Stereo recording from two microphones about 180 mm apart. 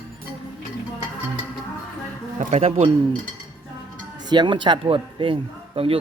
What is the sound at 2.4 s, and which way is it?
Speech, 40° right (ahead or behind).